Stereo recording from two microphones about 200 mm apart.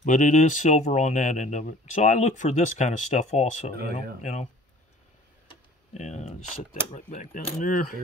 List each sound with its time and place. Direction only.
0.0 s speech: 40° left (ahead or behind)
5.9 s speech: 35° left (ahead or behind)